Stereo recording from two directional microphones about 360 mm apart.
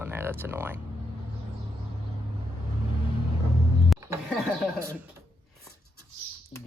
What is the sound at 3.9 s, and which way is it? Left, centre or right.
Music, centre.